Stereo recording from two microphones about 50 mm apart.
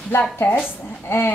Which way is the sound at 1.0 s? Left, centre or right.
Left.